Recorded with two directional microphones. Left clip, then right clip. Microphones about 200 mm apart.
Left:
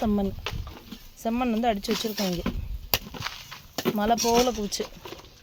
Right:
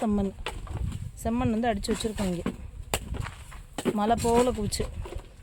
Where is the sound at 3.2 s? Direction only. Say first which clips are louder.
Left 7 dB; 45° left (ahead or behind).